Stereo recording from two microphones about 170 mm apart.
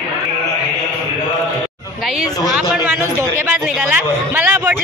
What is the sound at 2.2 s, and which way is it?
Speech, 20° left (ahead or behind).